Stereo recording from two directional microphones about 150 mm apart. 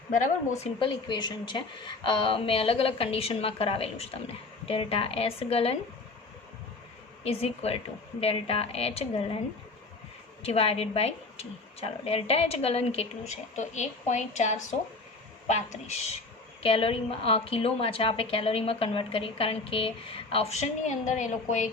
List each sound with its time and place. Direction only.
0.2 s speech: 45° left (ahead or behind)
0.8 s a woman's voice: 30° left (ahead or behind)
7.3 s a woman's voice: 45° left (ahead or behind)
10.4 s speech: 45° left (ahead or behind)
16.6 s a woman's voice: 35° left (ahead or behind); by 21.7 s 55° left (ahead or behind)